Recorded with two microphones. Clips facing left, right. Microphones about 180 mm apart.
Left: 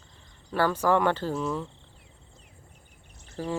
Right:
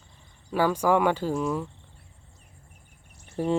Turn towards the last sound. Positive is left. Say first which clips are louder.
# right 6 dB
turn(degrees=-25)  # may be behind; listen again after turning